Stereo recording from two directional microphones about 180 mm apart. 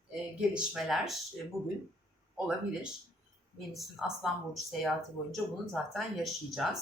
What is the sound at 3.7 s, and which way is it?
Speech, centre (ahead or behind).